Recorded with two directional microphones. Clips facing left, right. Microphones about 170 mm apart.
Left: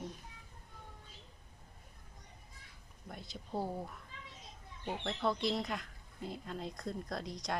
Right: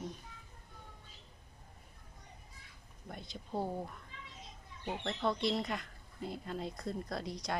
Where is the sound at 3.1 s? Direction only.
Centre (ahead or behind).